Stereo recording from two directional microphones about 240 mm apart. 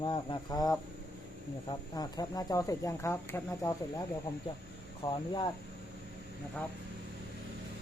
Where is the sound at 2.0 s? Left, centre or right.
Centre.